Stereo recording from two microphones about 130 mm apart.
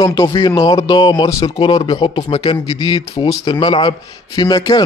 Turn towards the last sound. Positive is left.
turn(degrees=30)  # may be behind; listen again after turning